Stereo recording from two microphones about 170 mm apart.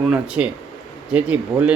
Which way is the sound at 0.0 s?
5° right (ahead or behind).